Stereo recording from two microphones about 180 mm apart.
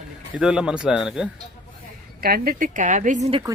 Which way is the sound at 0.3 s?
5° right (ahead or behind).